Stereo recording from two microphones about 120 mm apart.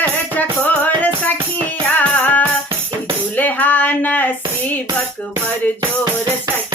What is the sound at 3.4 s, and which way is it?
Female singing, 15° left (ahead or behind).